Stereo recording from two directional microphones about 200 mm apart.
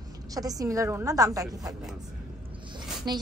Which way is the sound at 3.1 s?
20° right (ahead or behind).